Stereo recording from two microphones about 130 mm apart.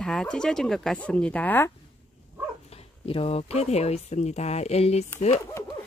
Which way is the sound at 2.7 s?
50° left (ahead or behind).